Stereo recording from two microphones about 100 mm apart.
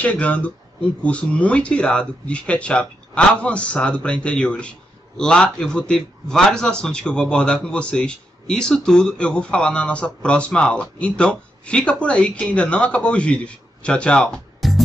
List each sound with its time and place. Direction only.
0.0 s speech: 15° left (ahead or behind)